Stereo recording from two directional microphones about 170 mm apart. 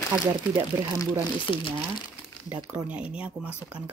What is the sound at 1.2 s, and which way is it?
Speech, 30° left (ahead or behind).